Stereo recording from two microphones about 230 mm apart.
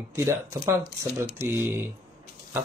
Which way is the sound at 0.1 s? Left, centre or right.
Centre.